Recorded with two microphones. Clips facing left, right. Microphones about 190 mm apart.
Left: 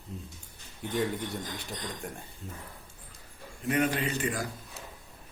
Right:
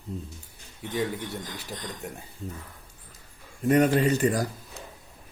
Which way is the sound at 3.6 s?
40° right (ahead or behind).